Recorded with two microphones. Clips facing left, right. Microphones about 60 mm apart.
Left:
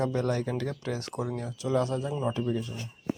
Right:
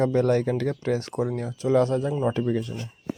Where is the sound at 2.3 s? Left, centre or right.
Right.